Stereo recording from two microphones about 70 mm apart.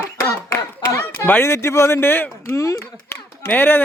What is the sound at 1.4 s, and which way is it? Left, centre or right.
Speech, left.